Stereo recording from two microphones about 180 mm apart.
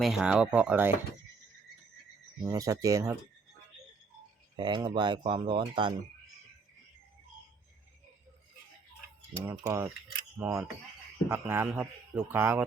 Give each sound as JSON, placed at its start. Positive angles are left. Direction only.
{"t": 0.0, "sound": "speech", "side_deg": -5}
{"t": 2.4, "sound": "speech", "side_deg": -20}
{"t": 4.5, "sound": "speech", "side_deg": -25}
{"t": 9.6, "sound": "speech", "side_deg": -15}